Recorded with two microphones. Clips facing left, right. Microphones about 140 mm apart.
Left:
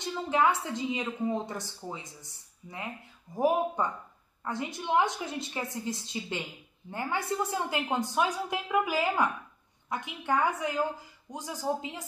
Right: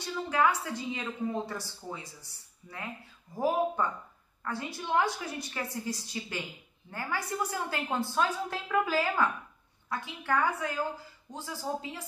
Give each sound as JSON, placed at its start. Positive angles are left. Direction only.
{"t": 0.0, "sound": "a woman's voice", "side_deg": 20}